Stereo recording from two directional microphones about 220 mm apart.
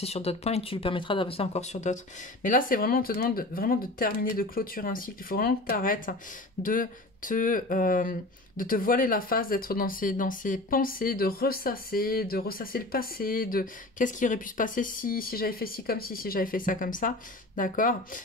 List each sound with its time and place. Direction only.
0.0 s speech: 25° left (ahead or behind)